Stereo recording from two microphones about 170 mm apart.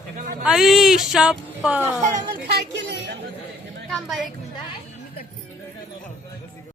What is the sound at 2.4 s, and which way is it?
Speech, 90° right.